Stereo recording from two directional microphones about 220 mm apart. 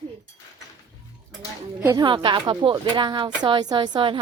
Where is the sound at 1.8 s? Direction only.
15° right (ahead or behind).